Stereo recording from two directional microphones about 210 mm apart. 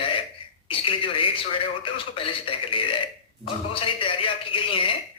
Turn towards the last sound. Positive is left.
turn(degrees=25)  # may be behind; listen again after turning